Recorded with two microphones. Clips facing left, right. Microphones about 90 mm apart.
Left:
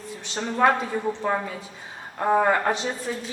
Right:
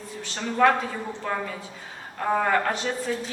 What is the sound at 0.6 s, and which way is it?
A woman's voice, 15° left (ahead or behind).